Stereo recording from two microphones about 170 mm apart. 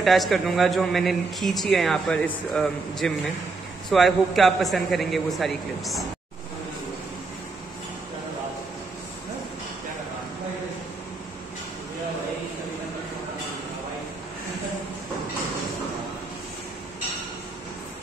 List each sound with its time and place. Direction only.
0.0 s a man's voice: centre (ahead or behind)